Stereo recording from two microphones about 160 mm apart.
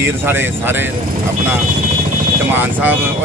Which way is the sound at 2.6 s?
10° right (ahead or behind).